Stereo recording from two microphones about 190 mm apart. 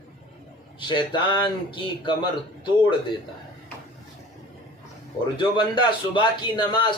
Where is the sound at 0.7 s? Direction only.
25° left (ahead or behind).